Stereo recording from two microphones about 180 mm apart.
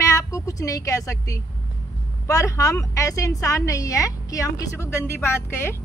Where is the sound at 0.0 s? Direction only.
15° left (ahead or behind).